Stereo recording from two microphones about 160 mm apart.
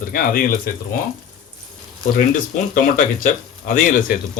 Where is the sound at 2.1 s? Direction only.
55° left (ahead or behind).